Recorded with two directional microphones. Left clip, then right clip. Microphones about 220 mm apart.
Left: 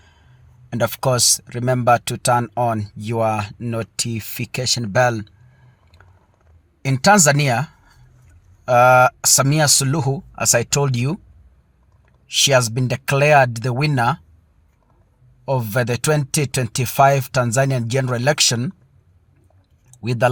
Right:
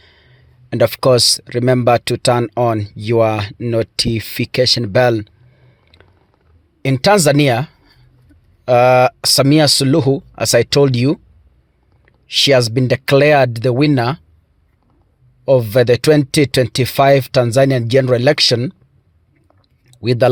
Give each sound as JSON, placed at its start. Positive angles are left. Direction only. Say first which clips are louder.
{"t": 0.7, "sound": "speech", "louder": "right 8 dB", "side_deg": -35}
{"t": 6.8, "sound": "speech", "louder": "right 2 dB", "side_deg": -35}
{"t": 12.3, "sound": "speech", "louder": "right 4 dB", "side_deg": -35}
{"t": 15.4, "sound": "speech", "louder": "right 10 dB", "side_deg": -35}
{"t": 20.0, "sound": "speech", "louder": "right 5 dB", "side_deg": -35}